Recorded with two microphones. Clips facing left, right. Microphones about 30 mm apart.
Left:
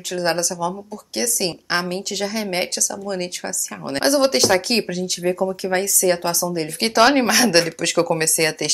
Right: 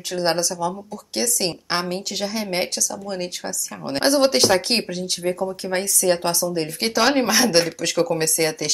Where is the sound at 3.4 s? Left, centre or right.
Centre.